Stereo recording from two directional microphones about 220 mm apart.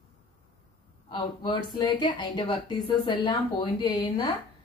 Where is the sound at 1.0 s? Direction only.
20° left (ahead or behind).